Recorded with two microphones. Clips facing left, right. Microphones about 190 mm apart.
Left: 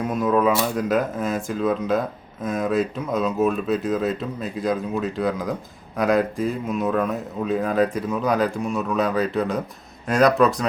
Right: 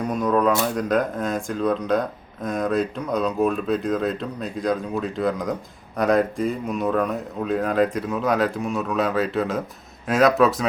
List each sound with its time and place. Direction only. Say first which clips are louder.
0.0 s speech: left 1 dB; 5° left (ahead or behind)